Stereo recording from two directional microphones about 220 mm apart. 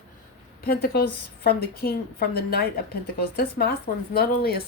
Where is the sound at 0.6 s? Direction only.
45° left (ahead or behind).